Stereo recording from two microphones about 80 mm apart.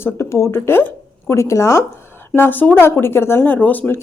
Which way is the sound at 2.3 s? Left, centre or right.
Left.